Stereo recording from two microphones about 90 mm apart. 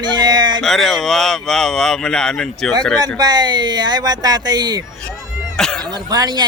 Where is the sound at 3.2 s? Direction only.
50° right (ahead or behind).